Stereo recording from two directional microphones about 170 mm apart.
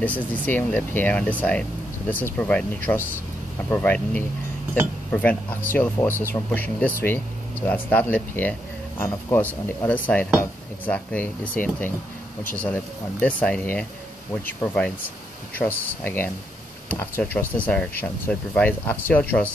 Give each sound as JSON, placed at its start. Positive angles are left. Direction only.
{"t": 0.0, "sound": "speech", "side_deg": 10}